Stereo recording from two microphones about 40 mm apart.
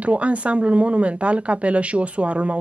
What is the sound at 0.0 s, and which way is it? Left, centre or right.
Speech, right.